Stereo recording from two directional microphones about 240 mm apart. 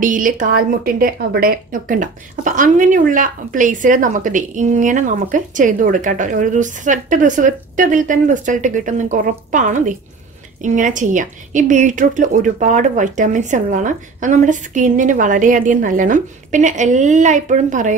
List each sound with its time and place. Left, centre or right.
0.0 s speech: right